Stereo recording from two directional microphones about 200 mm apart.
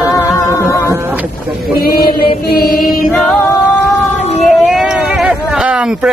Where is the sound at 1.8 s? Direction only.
50° left (ahead or behind).